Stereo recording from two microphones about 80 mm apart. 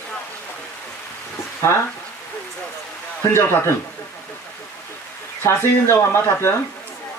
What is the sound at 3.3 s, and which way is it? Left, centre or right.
Speech, left.